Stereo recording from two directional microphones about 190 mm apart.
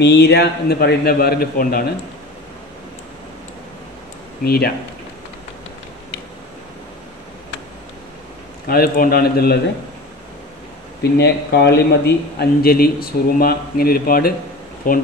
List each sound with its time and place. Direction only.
0.0 s speech: 65° left (ahead or behind)
4.5 s speech: 55° left (ahead or behind)
8.6 s speech: 50° left (ahead or behind)
11.0 s speech: 60° left (ahead or behind)